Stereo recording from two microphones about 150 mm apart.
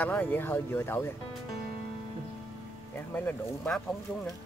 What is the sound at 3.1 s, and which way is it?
Speech, 10° left (ahead or behind).